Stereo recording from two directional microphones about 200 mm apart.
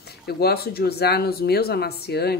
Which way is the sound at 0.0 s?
55° left (ahead or behind).